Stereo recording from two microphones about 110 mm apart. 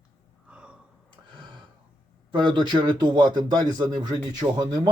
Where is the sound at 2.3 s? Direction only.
45° right (ahead or behind).